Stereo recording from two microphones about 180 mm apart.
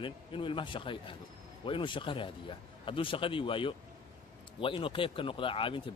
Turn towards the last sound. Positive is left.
turn(degrees=30)  # may be behind; listen again after turning